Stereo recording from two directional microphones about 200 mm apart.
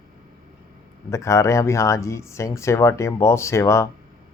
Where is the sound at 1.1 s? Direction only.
15° left (ahead or behind).